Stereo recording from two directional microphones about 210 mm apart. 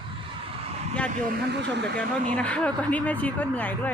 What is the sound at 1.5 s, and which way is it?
Speech, 55° right (ahead or behind).